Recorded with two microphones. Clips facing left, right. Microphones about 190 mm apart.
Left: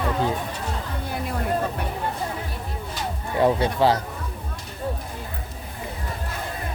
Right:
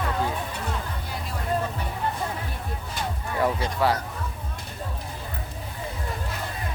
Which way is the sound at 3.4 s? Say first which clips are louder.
Left 5 dB; 25° left (ahead or behind).